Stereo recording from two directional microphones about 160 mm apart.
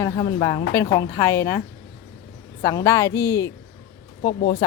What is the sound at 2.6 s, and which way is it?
Speech, 20° left (ahead or behind).